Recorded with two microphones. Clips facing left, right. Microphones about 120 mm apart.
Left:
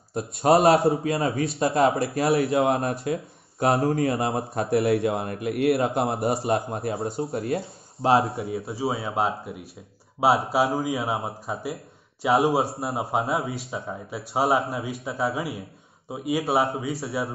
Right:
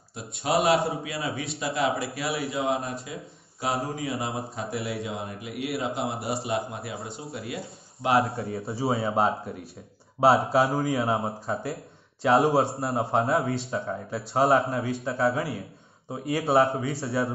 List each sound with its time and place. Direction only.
0.4 s a man's voice: 55° left (ahead or behind)
1.0 s a man's voice: 45° left (ahead or behind)
1.8 s speech: 55° left (ahead or behind)
6.4 s a man's voice: 45° left (ahead or behind)
8.0 s speech: 30° left (ahead or behind)
8.5 s a man's voice: centre (ahead or behind)